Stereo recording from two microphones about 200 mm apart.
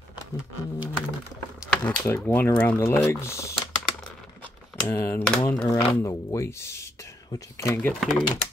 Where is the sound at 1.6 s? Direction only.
10° left (ahead or behind).